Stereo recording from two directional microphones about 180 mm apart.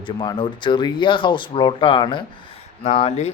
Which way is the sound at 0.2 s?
25° left (ahead or behind).